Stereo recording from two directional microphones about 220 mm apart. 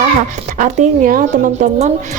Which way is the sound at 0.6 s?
35° right (ahead or behind).